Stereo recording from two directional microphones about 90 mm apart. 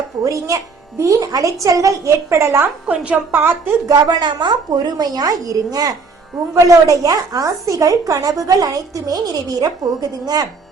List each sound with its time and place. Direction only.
0.3 s a woman's voice: 35° right (ahead or behind)
2.8 s a woman's voice: 10° right (ahead or behind)
3.8 s speech: 45° right (ahead or behind)
4.9 s a woman's voice: 45° right (ahead or behind)